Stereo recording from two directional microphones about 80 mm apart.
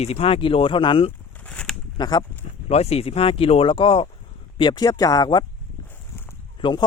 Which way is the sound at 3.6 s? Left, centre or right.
Left.